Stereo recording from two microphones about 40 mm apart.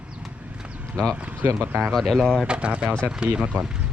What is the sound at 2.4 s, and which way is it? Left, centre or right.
Speech, right.